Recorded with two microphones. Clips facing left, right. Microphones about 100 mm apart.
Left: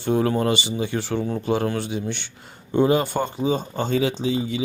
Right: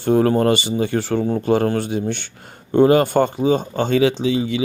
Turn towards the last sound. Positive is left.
turn(degrees=-90)